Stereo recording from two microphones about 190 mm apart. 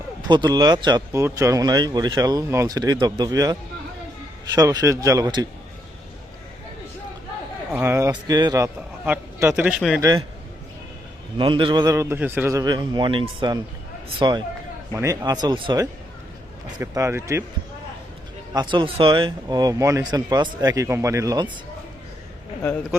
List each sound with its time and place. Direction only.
0.3 s speech: 20° right (ahead or behind)
7.7 s a man's voice: 10° right (ahead or behind)
10.0 s speech: 20° right (ahead or behind)
11.3 s a man's voice: 25° right (ahead or behind)
18.5 s speech: 25° right (ahead or behind)